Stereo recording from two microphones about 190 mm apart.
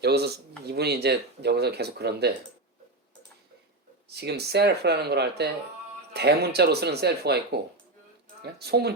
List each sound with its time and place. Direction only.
0.0 s speech: 60° right (ahead or behind)
4.1 s speech: 60° right (ahead or behind)